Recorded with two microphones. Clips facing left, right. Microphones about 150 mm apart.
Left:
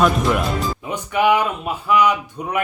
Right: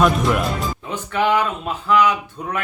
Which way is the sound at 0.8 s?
10° left (ahead or behind).